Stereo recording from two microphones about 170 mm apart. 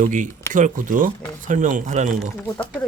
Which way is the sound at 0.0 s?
50° right (ahead or behind).